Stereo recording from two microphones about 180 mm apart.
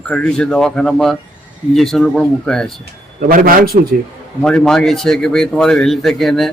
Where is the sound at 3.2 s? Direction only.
55° right (ahead or behind).